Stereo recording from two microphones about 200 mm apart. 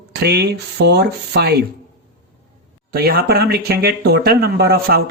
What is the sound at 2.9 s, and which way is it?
Speech, 50° right (ahead or behind).